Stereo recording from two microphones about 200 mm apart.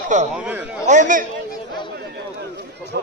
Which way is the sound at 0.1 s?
40° right (ahead or behind).